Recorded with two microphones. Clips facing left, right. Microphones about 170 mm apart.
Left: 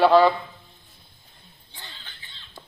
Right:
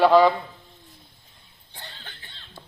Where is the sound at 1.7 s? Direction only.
60° right (ahead or behind).